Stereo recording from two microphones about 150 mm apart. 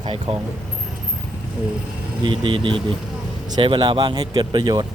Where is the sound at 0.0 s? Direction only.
35° right (ahead or behind).